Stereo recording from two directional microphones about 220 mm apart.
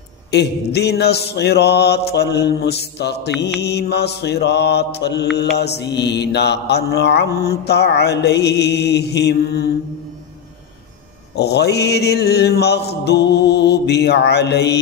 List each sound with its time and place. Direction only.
0.3 s mantra: 50° left (ahead or behind)
11.3 s mantra: 50° left (ahead or behind)